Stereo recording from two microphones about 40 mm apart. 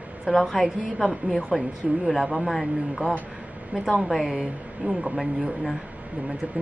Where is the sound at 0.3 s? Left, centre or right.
Centre.